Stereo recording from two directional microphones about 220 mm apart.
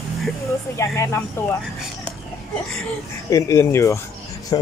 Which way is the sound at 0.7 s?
15° left (ahead or behind).